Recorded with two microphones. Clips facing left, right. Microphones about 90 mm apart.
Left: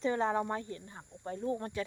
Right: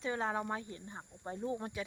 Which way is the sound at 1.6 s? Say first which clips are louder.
Left 4 dB; 10° right (ahead or behind).